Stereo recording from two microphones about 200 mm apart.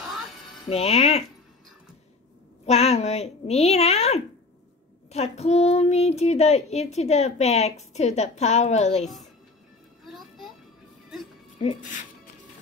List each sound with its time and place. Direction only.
0.0 s music: centre (ahead or behind)
0.7 s speech: 30° left (ahead or behind)
2.6 s speech: 30° left (ahead or behind)
9.0 s a woman's voice: centre (ahead or behind)
10.0 s a sound: centre (ahead or behind)
11.5 s speech: 35° left (ahead or behind)